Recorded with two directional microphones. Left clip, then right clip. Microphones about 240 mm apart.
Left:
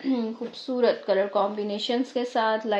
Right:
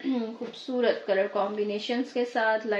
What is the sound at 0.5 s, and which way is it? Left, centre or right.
Speech, left.